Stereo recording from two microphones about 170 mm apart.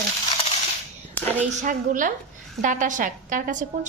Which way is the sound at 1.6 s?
50° right (ahead or behind).